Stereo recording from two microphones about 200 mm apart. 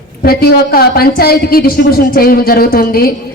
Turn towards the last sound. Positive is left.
turn(degrees=50)  # may be behind; listen again after turning